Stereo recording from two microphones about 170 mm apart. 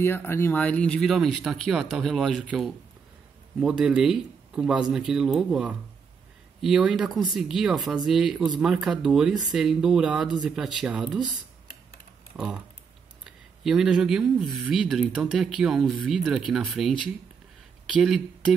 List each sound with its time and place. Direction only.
0.0 s speech: 15° left (ahead or behind); by 11.2 s 5° right (ahead or behind)
13.2 s speech: 5° right (ahead or behind)